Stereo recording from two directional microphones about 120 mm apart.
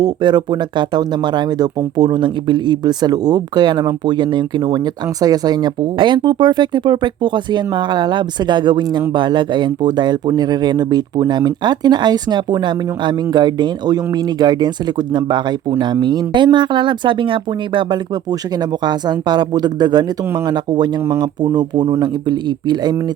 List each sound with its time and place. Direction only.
0.0 s speech: 40° right (ahead or behind)